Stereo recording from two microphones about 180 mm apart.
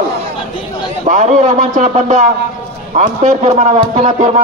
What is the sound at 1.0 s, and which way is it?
Speech, 45° right (ahead or behind).